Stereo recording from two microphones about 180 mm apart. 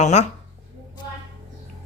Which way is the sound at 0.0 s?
40° left (ahead or behind).